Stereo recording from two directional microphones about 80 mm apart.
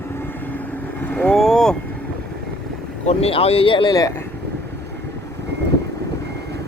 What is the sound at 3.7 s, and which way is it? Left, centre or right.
Speech, left.